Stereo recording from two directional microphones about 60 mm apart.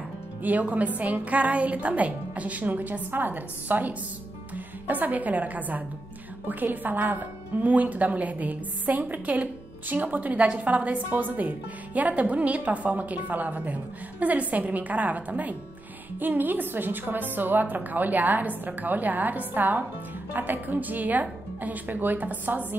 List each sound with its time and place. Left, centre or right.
0.4 s a woman's voice: right